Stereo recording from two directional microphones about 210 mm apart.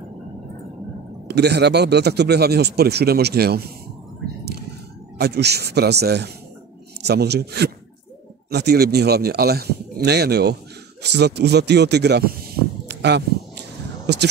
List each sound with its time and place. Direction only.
1.2 s a man's voice: 50° right (ahead or behind)
5.2 s a man's voice: 50° right (ahead or behind)
12.8 s a sound: 55° right (ahead or behind)